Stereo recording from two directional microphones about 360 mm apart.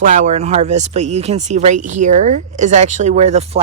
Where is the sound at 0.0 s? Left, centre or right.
Centre.